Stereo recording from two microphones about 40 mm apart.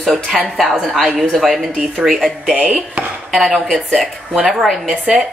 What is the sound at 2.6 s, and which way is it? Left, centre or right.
Chopping, right.